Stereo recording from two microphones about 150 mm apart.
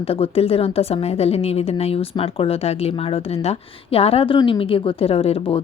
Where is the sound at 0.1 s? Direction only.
40° left (ahead or behind).